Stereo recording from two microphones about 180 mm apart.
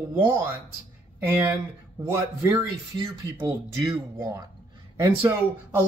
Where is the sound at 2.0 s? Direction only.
15° right (ahead or behind).